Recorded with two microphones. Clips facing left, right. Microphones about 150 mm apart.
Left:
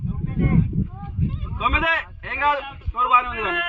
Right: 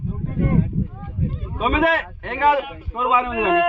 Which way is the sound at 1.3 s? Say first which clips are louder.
Right 8 dB; 50° right (ahead or behind).